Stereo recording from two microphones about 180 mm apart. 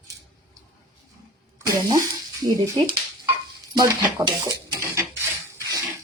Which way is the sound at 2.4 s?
20° right (ahead or behind).